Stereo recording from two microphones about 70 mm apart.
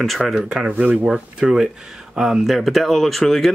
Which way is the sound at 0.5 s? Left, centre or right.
Centre.